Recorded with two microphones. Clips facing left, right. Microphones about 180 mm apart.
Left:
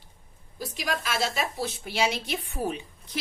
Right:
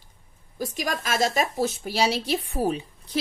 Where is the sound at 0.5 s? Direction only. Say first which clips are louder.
Right 3 dB; 45° right (ahead or behind).